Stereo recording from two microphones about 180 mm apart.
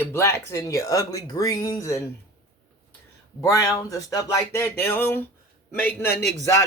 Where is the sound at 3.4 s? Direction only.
20° left (ahead or behind).